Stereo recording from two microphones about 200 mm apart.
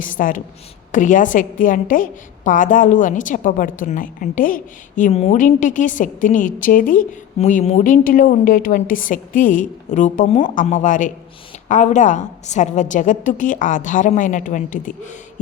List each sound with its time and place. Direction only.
0.0 s a woman's voice: 40° left (ahead or behind)